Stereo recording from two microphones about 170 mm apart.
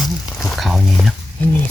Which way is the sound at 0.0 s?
Centre (ahead or behind).